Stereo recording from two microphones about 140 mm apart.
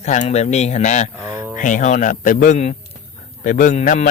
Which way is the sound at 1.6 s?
65° left (ahead or behind).